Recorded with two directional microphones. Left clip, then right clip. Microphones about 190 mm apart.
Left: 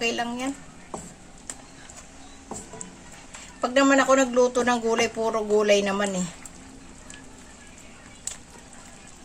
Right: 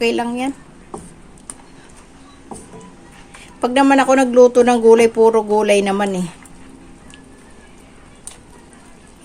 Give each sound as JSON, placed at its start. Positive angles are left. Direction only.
{"t": 0.0, "sound": "speech", "side_deg": -40}
{"t": 3.6, "sound": "speech", "side_deg": -45}